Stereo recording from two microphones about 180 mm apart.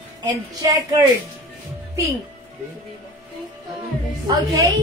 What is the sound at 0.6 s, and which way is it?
Speech, 20° right (ahead or behind).